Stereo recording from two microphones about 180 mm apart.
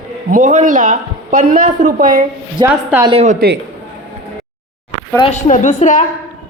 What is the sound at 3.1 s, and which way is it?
Speech, 40° right (ahead or behind).